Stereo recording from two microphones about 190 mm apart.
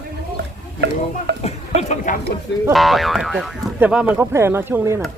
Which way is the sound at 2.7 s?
Centre (ahead or behind).